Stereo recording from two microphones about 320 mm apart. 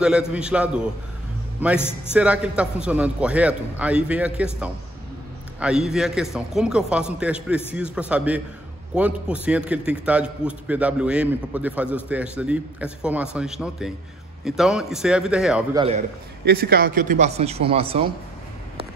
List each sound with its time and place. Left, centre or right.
0.0 s a man's voice: centre
1.8 s a man's voice: centre
2.1 s a man's voice: centre
5.6 s a man's voice: centre
16.4 s a man's voice: right